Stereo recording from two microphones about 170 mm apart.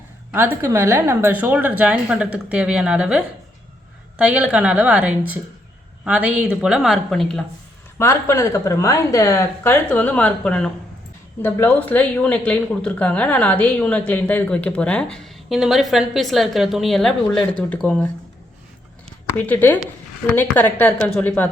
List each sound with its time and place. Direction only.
0.3 s a woman's voice: 15° right (ahead or behind); by 7.4 s centre (ahead or behind)
7.9 s speech: 15° left (ahead or behind)
19.4 s speech: 10° left (ahead or behind)